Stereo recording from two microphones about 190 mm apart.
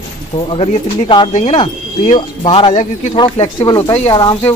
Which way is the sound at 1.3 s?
40° left (ahead or behind).